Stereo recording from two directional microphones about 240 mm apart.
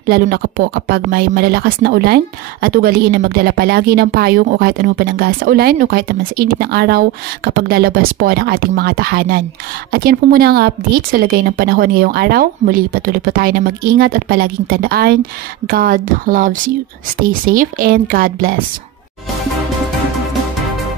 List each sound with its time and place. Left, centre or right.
0.1 s speech: right